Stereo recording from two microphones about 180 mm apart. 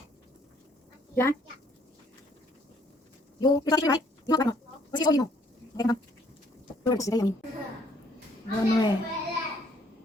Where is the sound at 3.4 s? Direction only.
20° left (ahead or behind).